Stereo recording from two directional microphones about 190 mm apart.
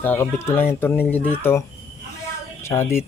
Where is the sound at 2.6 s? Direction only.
15° left (ahead or behind).